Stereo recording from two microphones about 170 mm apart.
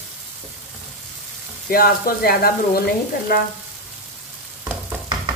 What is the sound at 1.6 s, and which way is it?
Frying, 60° left (ahead or behind).